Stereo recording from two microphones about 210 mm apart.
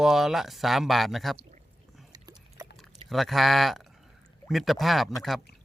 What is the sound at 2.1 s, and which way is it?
Pig, 20° right (ahead or behind).